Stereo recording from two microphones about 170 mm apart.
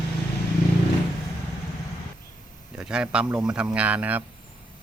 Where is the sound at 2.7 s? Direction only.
5° right (ahead or behind).